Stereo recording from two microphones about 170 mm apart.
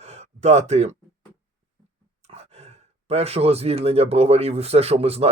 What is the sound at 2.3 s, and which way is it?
Sigh, 40° right (ahead or behind).